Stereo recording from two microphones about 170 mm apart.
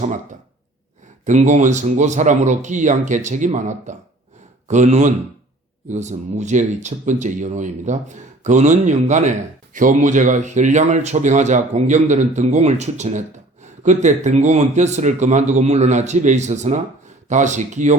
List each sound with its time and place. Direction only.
1.2 s speech: 45° right (ahead or behind)